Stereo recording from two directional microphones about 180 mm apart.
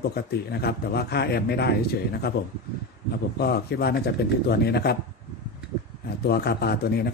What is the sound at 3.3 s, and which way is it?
A man's voice, 60° left (ahead or behind).